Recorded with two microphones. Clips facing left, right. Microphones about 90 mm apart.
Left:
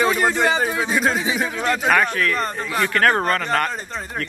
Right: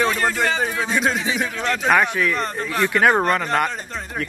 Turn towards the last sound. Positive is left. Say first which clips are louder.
# right 1 dB
turn(degrees=-5)  # may be behind; listen again after turning